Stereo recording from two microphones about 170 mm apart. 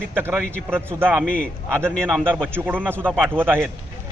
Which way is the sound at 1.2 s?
55° left (ahead or behind).